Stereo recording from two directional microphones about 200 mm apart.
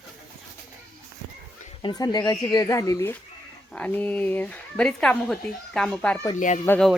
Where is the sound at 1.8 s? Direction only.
20° left (ahead or behind); by 6.2 s 5° left (ahead or behind).